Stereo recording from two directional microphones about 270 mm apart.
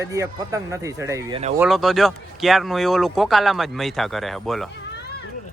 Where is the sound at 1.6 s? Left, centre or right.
Centre.